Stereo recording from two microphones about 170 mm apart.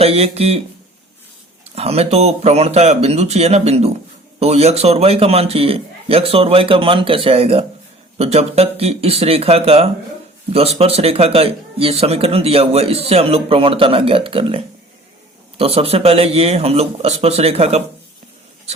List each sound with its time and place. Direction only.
0.0 s a man's voice: 35° right (ahead or behind)
1.7 s a man's voice: 35° right (ahead or behind)